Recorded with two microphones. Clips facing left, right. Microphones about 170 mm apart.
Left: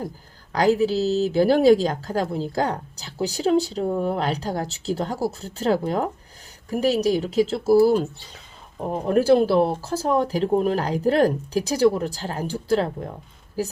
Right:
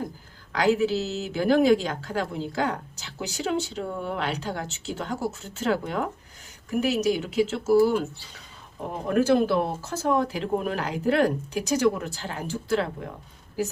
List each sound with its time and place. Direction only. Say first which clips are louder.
0.5 s speech: left 3 dB; 40° left (ahead or behind)